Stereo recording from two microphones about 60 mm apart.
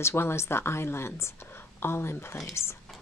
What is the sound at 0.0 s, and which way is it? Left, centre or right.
A woman's voice, left.